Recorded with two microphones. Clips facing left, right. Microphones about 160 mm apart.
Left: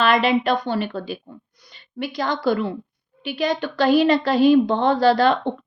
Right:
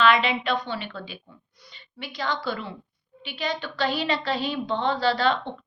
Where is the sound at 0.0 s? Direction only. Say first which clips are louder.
Left 4 dB; 40° left (ahead or behind).